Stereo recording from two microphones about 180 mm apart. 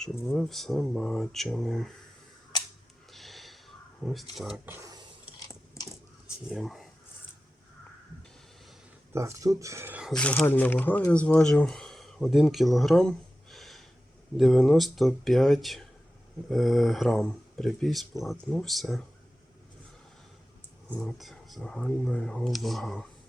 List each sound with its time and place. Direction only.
0.0 s speech: centre (ahead or behind)
3.1 s a sound: centre (ahead or behind)
4.4 s speech: centre (ahead or behind); by 5.0 s 20° right (ahead or behind)
5.5 s a sound: 20° left (ahead or behind)
6.5 s speech: centre (ahead or behind)
9.1 s speech: 15° right (ahead or behind)
10.1 s speech: 5° left (ahead or behind)
20.9 s speech: centre (ahead or behind)